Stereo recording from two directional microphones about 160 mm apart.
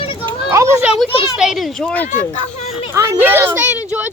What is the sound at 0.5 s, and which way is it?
Speech, 20° right (ahead or behind).